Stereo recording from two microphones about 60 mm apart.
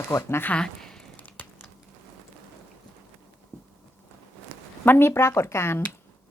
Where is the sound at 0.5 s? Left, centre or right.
Centre.